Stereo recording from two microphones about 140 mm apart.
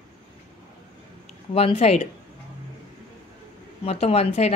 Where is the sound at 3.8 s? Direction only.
45° left (ahead or behind).